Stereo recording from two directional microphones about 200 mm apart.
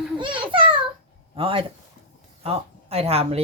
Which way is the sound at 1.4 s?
25° right (ahead or behind).